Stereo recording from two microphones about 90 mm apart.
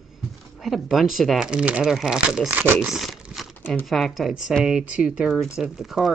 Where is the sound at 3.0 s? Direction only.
Centre (ahead or behind).